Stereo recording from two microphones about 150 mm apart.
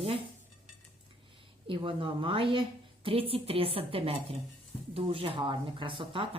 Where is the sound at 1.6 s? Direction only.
35° right (ahead or behind).